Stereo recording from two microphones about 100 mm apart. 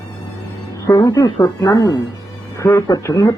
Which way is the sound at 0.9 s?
35° left (ahead or behind).